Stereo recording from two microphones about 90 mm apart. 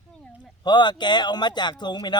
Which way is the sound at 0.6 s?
55° left (ahead or behind).